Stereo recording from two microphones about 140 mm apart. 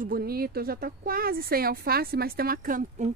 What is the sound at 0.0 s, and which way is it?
Speech, 90° right.